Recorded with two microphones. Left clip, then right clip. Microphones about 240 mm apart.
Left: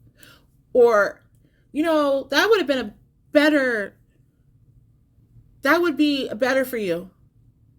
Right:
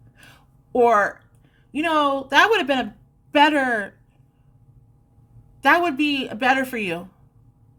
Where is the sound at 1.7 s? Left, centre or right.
Centre.